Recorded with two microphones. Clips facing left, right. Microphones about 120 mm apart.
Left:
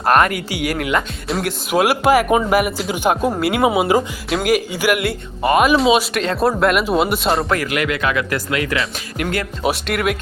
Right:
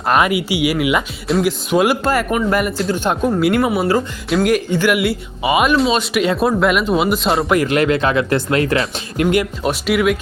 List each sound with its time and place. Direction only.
0.0 s speech: centre (ahead or behind)
3.6 s speech: 15° left (ahead or behind)
4.3 s speech: centre (ahead or behind)
4.9 s speech: 5° right (ahead or behind)
7.5 s speech: 25° right (ahead or behind)
9.2 s speech: 15° right (ahead or behind)
9.8 s speech: centre (ahead or behind)